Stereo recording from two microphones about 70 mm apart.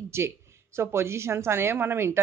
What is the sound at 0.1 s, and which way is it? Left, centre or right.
A woman's voice, right.